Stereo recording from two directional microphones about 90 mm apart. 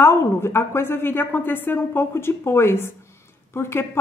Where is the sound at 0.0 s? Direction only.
25° left (ahead or behind).